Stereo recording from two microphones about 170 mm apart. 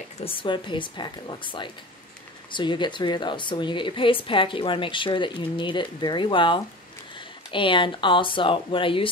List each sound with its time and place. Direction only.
0.2 s speech: 30° left (ahead or behind)